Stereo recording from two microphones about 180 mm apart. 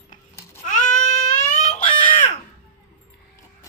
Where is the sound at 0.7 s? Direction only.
45° left (ahead or behind).